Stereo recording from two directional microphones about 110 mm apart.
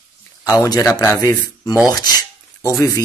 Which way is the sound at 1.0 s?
30° left (ahead or behind).